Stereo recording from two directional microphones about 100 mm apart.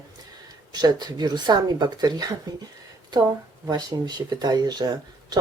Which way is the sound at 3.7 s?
45° right (ahead or behind).